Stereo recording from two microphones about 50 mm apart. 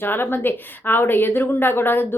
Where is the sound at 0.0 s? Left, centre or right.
Left.